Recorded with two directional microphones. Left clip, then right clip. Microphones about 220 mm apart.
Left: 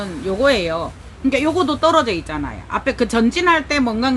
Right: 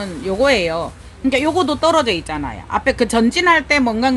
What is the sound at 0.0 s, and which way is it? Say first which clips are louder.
Speech: right 1 dB; 35° right (ahead or behind).